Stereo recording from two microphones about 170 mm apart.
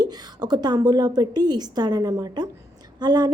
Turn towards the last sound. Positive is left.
turn(degrees=-25)  # may be behind; listen again after turning